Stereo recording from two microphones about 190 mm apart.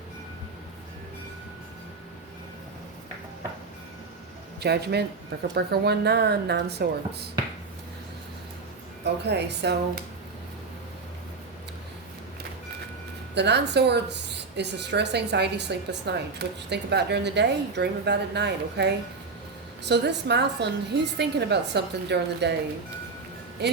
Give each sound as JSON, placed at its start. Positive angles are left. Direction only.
{"t": 4.6, "sound": "speech", "side_deg": -60}
{"t": 9.0, "sound": "speech", "side_deg": -60}
{"t": 13.3, "sound": "speech", "side_deg": -60}
{"t": 19.9, "sound": "speech", "side_deg": -60}
{"t": 23.6, "sound": "speech", "side_deg": -60}